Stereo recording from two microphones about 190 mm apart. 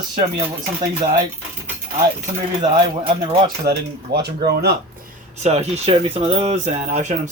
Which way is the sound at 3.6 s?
60° right (ahead or behind).